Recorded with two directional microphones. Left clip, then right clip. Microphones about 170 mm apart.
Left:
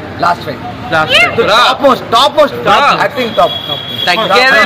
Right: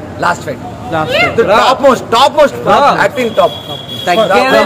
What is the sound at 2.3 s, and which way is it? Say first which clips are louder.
Speech: even; 5° right (ahead or behind).